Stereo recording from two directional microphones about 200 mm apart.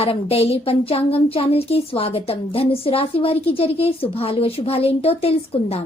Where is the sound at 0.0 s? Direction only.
30° left (ahead or behind).